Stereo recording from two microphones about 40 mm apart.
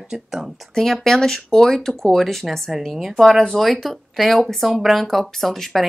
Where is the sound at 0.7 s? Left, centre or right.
Centre.